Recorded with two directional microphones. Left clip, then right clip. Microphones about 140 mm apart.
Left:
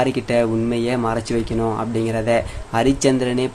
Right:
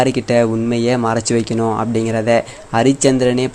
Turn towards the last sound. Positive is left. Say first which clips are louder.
# right 4 dB
turn(degrees=-25)  # may be behind; listen again after turning